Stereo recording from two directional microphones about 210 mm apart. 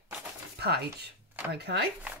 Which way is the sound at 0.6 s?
50° right (ahead or behind).